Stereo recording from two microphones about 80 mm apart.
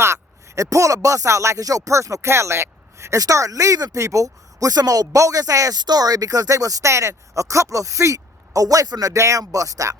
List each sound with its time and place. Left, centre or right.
0.0 s speech: right
5.8 s speech: right